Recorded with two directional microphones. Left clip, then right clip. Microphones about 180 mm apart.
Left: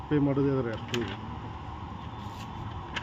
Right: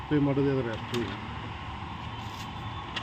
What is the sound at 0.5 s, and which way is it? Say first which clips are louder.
Speech: even; centre (ahead or behind).